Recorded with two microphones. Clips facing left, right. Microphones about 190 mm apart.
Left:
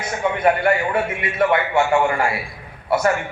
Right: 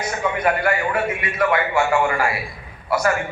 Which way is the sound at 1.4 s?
25° left (ahead or behind).